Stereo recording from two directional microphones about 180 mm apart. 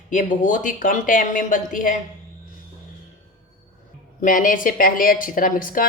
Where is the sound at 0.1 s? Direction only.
45° left (ahead or behind).